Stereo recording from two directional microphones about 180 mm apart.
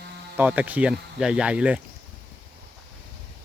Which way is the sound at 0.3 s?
10° right (ahead or behind).